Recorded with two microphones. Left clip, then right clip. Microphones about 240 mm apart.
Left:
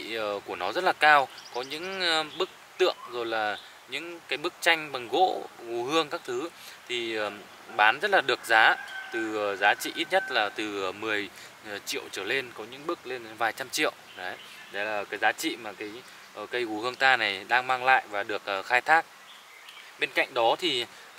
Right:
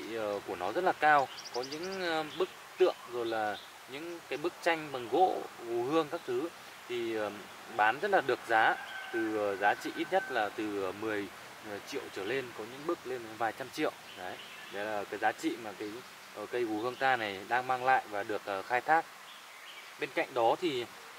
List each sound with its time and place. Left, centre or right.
0.1 s speech: centre
5.1 s speech: right
5.9 s speech: centre
16.8 s speech: centre